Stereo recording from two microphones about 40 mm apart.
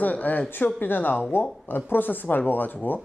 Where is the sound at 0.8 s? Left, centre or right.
Left.